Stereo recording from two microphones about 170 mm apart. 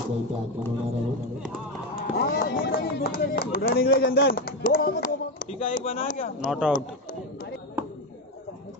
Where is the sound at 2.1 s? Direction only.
60° left (ahead or behind).